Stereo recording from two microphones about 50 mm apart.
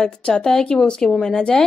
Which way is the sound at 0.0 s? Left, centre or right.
Centre.